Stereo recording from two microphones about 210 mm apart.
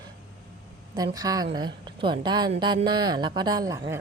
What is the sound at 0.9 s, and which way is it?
A woman's voice, 15° right (ahead or behind).